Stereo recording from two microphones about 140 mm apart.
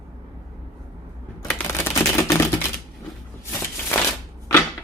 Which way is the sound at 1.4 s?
20° left (ahead or behind).